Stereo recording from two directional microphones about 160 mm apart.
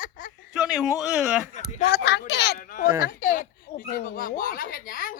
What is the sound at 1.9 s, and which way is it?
Speech, 90° left.